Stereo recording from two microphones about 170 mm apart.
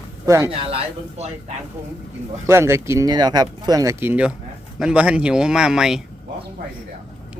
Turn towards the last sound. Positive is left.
turn(degrees=-5)  # may be behind; listen again after turning